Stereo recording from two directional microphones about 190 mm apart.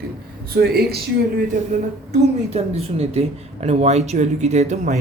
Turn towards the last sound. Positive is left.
turn(degrees=-40)  # may be behind; listen again after turning